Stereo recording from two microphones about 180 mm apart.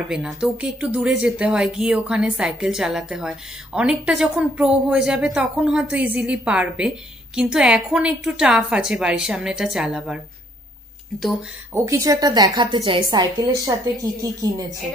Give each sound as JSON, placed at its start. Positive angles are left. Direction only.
{"t": 0.1, "sound": "speech", "side_deg": -5}
{"t": 11.7, "sound": "a woman's voice", "side_deg": -15}